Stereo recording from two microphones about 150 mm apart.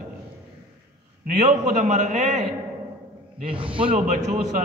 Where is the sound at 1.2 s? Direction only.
50° right (ahead or behind).